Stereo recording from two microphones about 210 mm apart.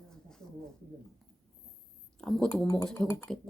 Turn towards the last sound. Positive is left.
turn(degrees=5)  # may be behind; listen again after turning